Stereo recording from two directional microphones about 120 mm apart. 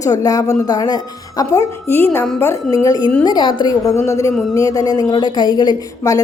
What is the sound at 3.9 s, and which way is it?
A woman's voice, 25° left (ahead or behind).